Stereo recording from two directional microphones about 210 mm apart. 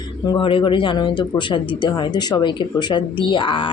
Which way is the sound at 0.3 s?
25° left (ahead or behind).